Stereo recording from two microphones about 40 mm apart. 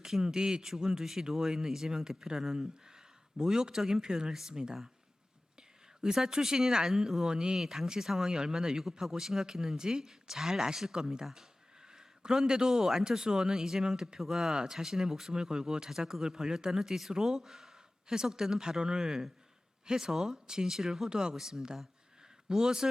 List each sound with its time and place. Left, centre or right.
0.0 s speech: centre
6.0 s speech: centre
21.1 s speech: centre